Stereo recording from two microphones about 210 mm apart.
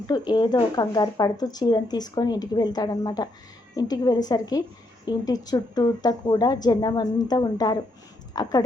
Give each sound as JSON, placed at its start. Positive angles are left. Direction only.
{"t": 0.1, "sound": "a woman's voice", "side_deg": 20}